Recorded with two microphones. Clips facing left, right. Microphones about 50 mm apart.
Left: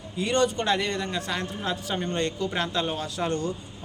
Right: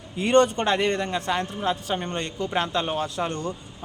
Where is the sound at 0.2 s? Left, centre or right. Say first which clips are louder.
Right 5 dB; right.